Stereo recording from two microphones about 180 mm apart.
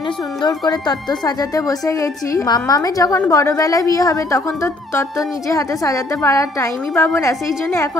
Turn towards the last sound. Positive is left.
turn(degrees=15)  # may be behind; listen again after turning